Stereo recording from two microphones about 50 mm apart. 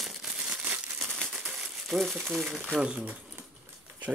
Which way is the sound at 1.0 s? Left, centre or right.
Centre.